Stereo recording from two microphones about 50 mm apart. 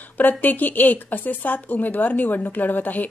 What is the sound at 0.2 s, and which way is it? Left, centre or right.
Speech, left.